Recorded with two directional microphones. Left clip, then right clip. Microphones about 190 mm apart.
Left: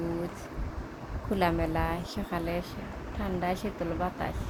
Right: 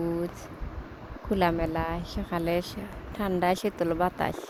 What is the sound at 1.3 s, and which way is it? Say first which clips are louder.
A woman's voice: right 2 dB; 30° right (ahead or behind).